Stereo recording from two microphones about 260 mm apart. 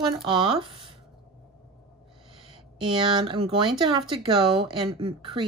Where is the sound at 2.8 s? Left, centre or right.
Centre.